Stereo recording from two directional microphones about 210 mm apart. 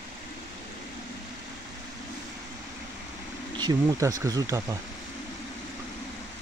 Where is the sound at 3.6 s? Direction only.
20° right (ahead or behind).